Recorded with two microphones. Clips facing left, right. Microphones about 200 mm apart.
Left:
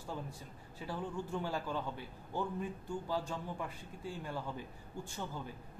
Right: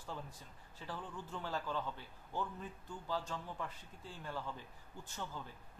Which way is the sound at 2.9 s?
10° left (ahead or behind).